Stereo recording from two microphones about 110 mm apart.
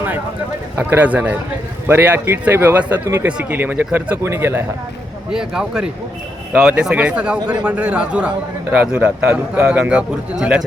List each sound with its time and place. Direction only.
0.8 s a man's voice: 15° right (ahead or behind)
5.3 s a man's voice: 5° right (ahead or behind)